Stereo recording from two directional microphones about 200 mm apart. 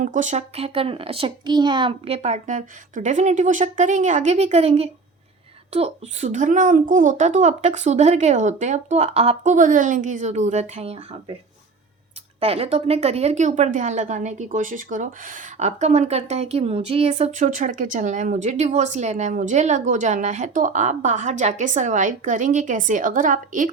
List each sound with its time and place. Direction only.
0.0 s a woman's voice: 40° right (ahead or behind)
12.4 s a woman's voice: 30° right (ahead or behind)